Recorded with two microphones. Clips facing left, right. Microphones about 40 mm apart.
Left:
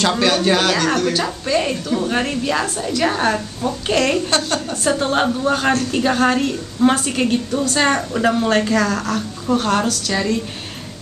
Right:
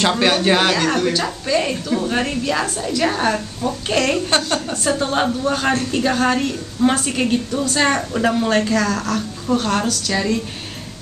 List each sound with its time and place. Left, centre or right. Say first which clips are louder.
0.2 s a woman's voice: right 1 dB; centre